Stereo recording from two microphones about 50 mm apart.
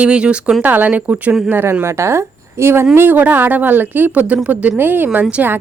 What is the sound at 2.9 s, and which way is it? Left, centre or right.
A woman's voice, right.